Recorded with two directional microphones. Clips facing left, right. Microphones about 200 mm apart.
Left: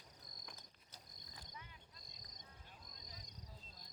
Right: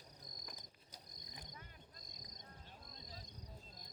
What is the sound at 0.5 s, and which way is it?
Cricket, 15° right (ahead or behind).